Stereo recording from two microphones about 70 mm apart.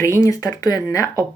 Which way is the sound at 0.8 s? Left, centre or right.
Left.